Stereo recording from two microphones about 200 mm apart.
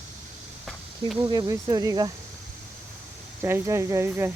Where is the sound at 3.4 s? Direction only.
10° right (ahead or behind).